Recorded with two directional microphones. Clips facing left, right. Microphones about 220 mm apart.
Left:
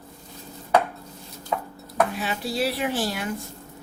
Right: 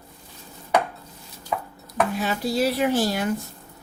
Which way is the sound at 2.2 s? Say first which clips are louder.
Right 3 dB; 45° right (ahead or behind).